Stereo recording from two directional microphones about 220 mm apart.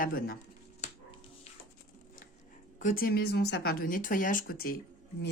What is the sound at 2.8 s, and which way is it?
Speech, 40° left (ahead or behind).